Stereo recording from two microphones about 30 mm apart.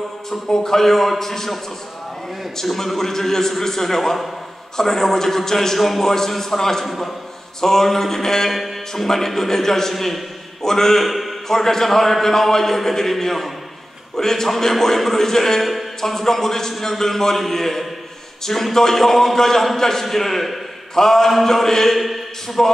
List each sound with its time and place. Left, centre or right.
0.3 s a man's voice: centre
2.6 s a man's voice: centre
5.8 s a man's voice: centre
6.0 s a man's voice: centre
8.5 s a man's voice: centre
11.1 s a sound: centre
11.4 s a man's voice: centre
21.9 s speech: centre